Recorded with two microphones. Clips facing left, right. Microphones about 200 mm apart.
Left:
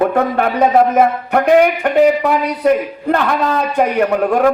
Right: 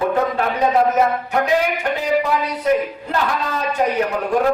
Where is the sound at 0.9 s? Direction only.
60° left (ahead or behind).